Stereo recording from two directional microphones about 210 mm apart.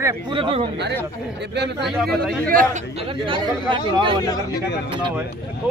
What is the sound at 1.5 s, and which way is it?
Speech, 55° right (ahead or behind).